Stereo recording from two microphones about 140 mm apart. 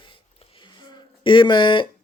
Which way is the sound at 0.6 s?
35° left (ahead or behind).